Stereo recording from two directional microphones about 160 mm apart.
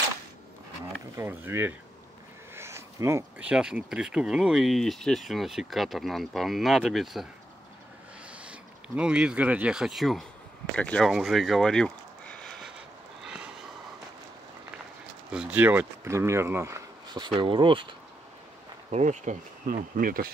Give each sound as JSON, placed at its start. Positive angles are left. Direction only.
{"t": 1.1, "sound": "speech", "side_deg": -15}
{"t": 2.5, "sound": "a sound", "side_deg": -15}
{"t": 3.3, "sound": "speech", "side_deg": -5}
{"t": 8.3, "sound": "speech", "side_deg": -5}
{"t": 13.2, "sound": "a sound", "side_deg": -5}
{"t": 15.3, "sound": "speech", "side_deg": -10}
{"t": 18.9, "sound": "speech", "side_deg": -45}